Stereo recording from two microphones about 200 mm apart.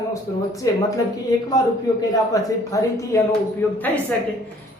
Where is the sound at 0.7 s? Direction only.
15° left (ahead or behind).